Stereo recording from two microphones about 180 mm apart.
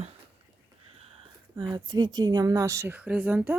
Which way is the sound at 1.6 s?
25° right (ahead or behind).